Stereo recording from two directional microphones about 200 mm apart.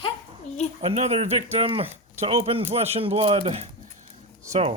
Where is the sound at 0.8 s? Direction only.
30° right (ahead or behind).